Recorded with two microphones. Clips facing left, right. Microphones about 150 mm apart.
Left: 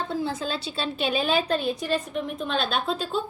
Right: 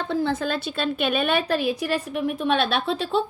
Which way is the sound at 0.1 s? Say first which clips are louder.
Right 4 dB; 60° right (ahead or behind).